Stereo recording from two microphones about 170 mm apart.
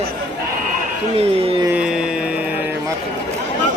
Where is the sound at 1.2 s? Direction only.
35° right (ahead or behind).